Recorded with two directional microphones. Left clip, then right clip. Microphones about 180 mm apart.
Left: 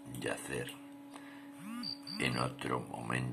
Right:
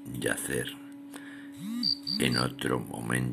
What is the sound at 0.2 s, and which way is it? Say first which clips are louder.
Speech: right 7 dB; 10° right (ahead or behind).